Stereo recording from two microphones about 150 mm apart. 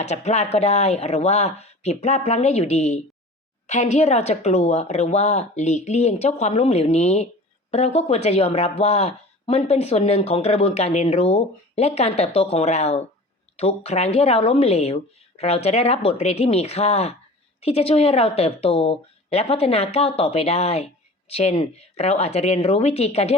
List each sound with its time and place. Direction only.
0.0 s a woman's voice: 50° left (ahead or behind)